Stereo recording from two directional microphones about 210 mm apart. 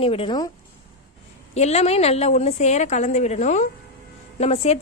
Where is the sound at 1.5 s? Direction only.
30° left (ahead or behind).